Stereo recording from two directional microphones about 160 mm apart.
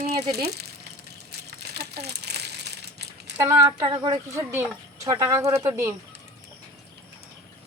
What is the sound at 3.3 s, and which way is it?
Speech, 20° right (ahead or behind).